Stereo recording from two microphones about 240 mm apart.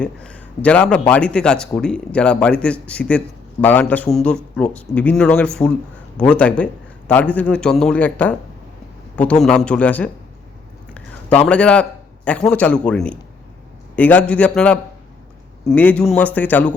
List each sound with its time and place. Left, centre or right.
0.0 s a man's voice: centre